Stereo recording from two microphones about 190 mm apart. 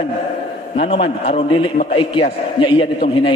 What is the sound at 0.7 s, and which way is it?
A man's voice, 30° left (ahead or behind).